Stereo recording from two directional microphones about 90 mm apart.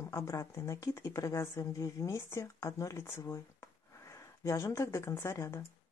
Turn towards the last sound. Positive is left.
turn(degrees=35)  # may be behind; listen again after turning